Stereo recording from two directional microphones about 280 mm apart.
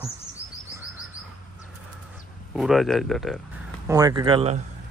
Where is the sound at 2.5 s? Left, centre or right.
Centre.